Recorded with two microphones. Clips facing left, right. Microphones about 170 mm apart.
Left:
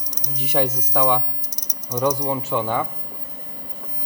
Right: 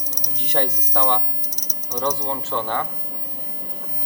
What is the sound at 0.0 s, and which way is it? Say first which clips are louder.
Speech: left 1 dB; 10° left (ahead or behind).